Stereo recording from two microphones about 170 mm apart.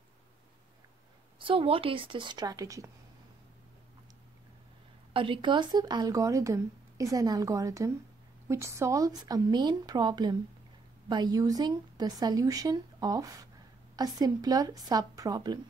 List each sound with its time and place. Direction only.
1.4 s speech: 30° right (ahead or behind)
5.1 s speech: 30° right (ahead or behind)